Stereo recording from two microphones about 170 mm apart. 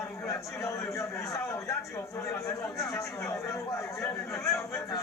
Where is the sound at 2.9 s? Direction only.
15° left (ahead or behind).